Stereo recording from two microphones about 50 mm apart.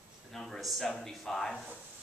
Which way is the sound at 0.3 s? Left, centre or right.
Centre.